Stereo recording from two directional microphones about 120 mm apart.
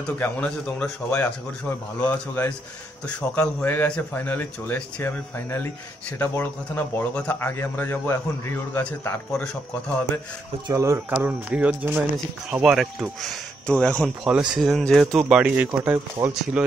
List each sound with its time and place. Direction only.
0.0 s a man's voice: 10° left (ahead or behind)
10.7 s speech: 25° right (ahead or behind); by 14.1 s 10° left (ahead or behind)
14.2 s speech: 5° right (ahead or behind)